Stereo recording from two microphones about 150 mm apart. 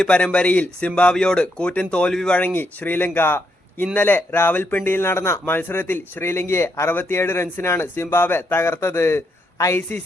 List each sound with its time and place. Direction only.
0.0 s speech: 10° left (ahead or behind)